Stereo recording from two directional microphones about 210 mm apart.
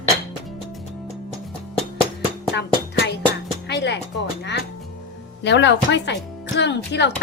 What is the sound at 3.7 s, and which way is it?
Speech, 55° left (ahead or behind).